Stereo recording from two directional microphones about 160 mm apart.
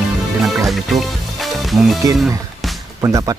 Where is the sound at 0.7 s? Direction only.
Centre (ahead or behind).